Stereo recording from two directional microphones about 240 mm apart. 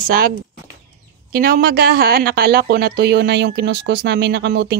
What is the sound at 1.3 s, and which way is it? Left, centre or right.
A woman's voice, right.